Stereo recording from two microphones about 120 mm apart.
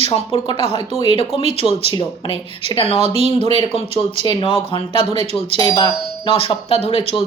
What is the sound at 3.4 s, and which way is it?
Speech, 45° left (ahead or behind).